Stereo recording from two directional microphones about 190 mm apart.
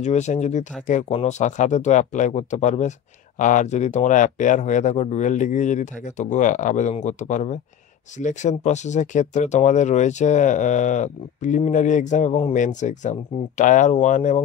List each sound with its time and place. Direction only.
0.0 s speech: 35° left (ahead or behind)